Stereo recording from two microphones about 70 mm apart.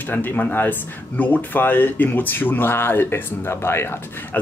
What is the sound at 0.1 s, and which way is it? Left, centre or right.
Speech, left.